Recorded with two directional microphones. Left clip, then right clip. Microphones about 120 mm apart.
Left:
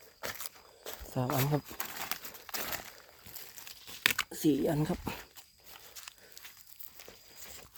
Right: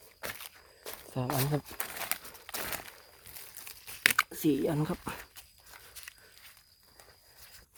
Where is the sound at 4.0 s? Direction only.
15° right (ahead or behind).